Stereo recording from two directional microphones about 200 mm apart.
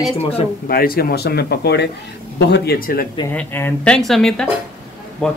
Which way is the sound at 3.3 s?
10° left (ahead or behind).